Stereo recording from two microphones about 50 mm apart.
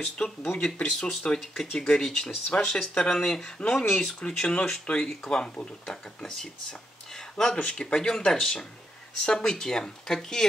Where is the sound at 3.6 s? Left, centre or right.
Left.